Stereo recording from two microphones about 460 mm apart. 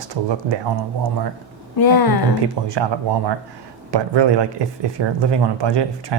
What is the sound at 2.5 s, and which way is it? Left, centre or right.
Speech, right.